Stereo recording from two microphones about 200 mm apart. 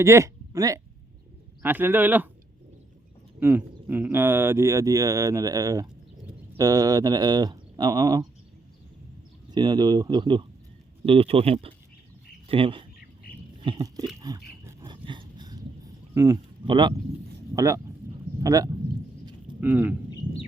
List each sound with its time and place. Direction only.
0.0 s speech: 15° right (ahead or behind)
3.4 s speech: 10° right (ahead or behind)
9.5 s speech: 20° right (ahead or behind)
13.6 s a sound: 20° right (ahead or behind)
16.1 s speech: 15° right (ahead or behind)